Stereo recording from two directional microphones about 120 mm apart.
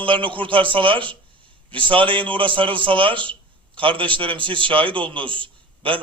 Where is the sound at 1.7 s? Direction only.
45° right (ahead or behind).